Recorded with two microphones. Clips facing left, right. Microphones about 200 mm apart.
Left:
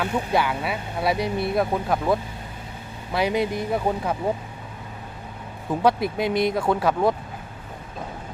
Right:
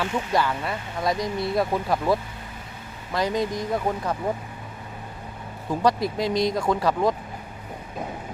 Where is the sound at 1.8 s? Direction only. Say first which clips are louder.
Left 1 dB; centre (ahead or behind).